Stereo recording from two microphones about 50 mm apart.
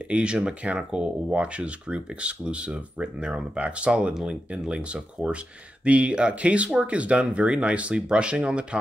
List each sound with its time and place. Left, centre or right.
0.1 s speech: right
4.1 s speech: centre
4.5 s speech: right